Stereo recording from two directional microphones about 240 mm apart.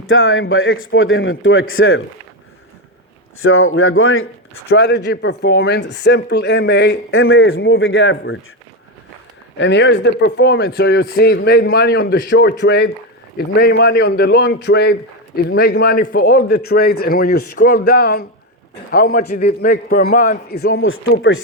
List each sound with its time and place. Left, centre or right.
0.1 s a man's voice: left
3.4 s a man's voice: left
4.6 s speech: left
9.6 s a man's voice: left
20.8 s a man's voice: left